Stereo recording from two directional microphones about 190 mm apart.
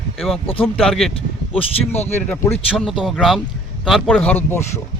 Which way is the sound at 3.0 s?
Centre (ahead or behind).